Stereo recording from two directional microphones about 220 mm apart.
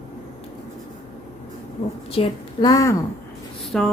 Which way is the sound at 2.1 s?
20° left (ahead or behind).